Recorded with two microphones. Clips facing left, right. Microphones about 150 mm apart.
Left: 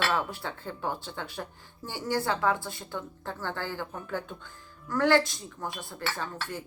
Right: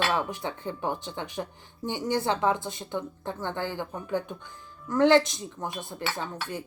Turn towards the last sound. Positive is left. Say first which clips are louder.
# right 2 dB
turn(degrees=-20)  # may be behind; listen again after turning